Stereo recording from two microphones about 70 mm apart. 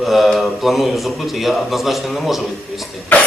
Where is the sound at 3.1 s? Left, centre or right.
Left.